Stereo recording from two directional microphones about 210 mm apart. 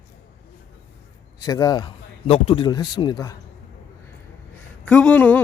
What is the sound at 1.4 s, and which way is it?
A man's voice, 15° left (ahead or behind).